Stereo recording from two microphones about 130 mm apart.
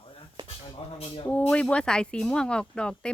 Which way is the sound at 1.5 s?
10° left (ahead or behind).